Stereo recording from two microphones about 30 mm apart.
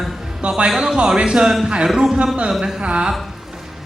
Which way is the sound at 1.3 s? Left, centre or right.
Centre.